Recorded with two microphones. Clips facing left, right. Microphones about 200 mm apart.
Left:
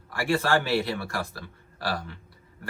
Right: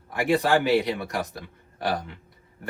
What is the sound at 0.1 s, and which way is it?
A man's voice, 20° right (ahead or behind).